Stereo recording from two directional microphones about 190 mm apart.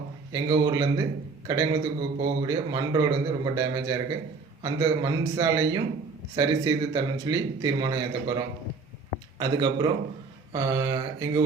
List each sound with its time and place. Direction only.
0.3 s a man's voice: 20° right (ahead or behind)